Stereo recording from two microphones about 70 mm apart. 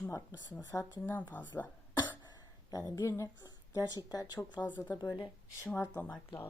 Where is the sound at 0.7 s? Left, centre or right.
Left.